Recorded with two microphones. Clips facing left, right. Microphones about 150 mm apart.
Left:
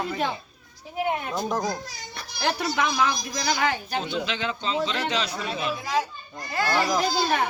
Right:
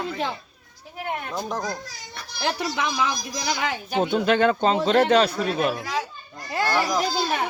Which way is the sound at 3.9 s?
55° right (ahead or behind).